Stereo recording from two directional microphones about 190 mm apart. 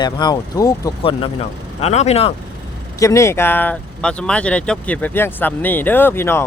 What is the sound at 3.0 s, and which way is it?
Speech, 15° left (ahead or behind).